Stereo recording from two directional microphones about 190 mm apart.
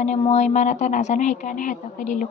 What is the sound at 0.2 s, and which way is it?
A woman's voice, 35° left (ahead or behind).